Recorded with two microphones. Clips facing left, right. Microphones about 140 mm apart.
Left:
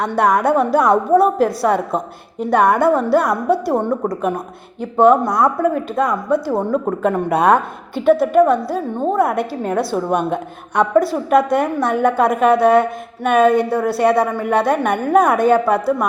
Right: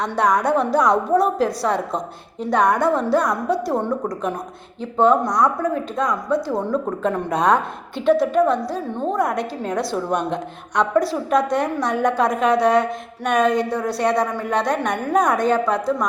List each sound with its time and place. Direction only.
0.0 s a woman's voice: 5° left (ahead or behind)
3.8 s a woman's voice: 25° left (ahead or behind)
4.1 s a woman's voice: 5° left (ahead or behind)